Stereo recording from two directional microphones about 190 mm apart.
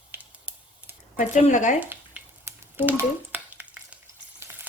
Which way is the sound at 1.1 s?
40° left (ahead or behind).